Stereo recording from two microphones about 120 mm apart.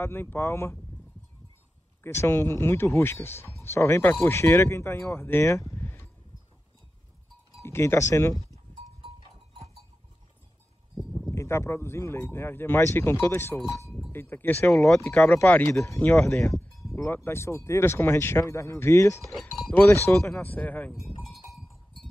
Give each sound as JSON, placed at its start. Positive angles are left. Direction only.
{"t": 0.0, "sound": "speech", "side_deg": 20}
{"t": 2.0, "sound": "speech", "side_deg": 20}
{"t": 7.6, "sound": "speech", "side_deg": 20}
{"t": 11.0, "sound": "a sound", "side_deg": 5}
{"t": 11.2, "sound": "speech", "side_deg": 20}
{"t": 14.8, "sound": "speech", "side_deg": 5}
{"t": 15.7, "sound": "speech", "side_deg": 25}
{"t": 16.0, "sound": "speech", "side_deg": 10}
{"t": 16.9, "sound": "speech", "side_deg": 20}